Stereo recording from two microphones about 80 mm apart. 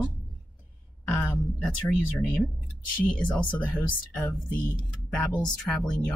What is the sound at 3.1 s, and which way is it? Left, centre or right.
Speech, centre.